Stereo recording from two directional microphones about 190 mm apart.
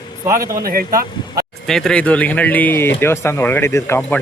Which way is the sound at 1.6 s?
Centre (ahead or behind).